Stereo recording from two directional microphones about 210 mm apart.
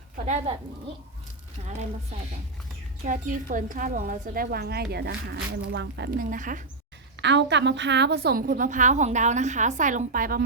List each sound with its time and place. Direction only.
3.1 s a woman's voice: 40° right (ahead or behind)
7.2 s a woman's voice: 55° right (ahead or behind); by 10.4 s 40° right (ahead or behind)